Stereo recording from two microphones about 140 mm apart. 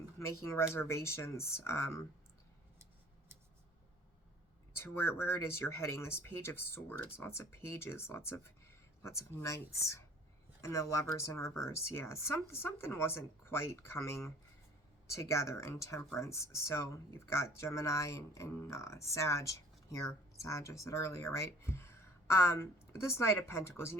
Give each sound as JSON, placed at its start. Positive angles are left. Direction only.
{"t": 0.4, "sound": "speech", "side_deg": 20}
{"t": 4.7, "sound": "speech", "side_deg": 15}